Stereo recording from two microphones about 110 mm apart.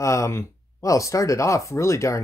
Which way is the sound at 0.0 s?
30° left (ahead or behind).